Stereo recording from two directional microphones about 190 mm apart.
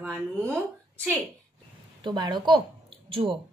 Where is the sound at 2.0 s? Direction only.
25° right (ahead or behind).